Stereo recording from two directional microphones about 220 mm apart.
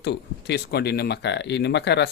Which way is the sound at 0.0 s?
50° left (ahead or behind).